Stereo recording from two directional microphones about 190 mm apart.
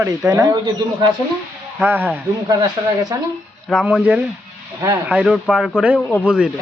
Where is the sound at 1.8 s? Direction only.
10° right (ahead or behind).